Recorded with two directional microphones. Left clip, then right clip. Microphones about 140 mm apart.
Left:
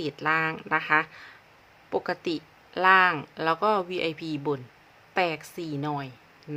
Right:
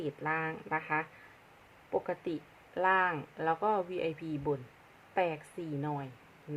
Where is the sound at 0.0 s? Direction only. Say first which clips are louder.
Left 9 dB; 35° left (ahead or behind).